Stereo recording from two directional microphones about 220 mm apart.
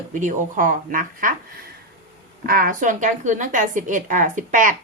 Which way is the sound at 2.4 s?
40° right (ahead or behind).